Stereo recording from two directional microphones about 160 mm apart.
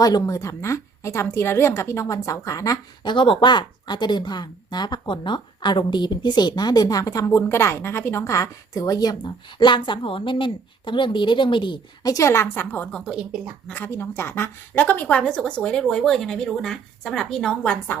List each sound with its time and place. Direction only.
0.0 s a woman's voice: 20° left (ahead or behind)
13.1 s a woman's voice: 5° right (ahead or behind)
13.7 s a woman's voice: 10° left (ahead or behind)